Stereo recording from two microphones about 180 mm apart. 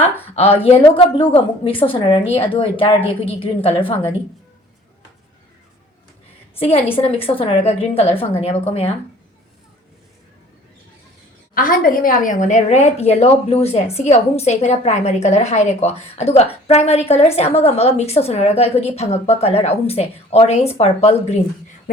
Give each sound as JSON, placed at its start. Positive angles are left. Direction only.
{"t": 0.3, "sound": "a woman's voice", "side_deg": 35}
{"t": 6.8, "sound": "a woman's voice", "side_deg": 30}
{"t": 11.5, "sound": "a woman's voice", "side_deg": 50}